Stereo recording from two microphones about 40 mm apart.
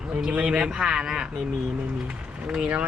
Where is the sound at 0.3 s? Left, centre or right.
Right.